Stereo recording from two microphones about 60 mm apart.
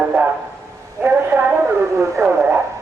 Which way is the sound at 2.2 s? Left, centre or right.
Right.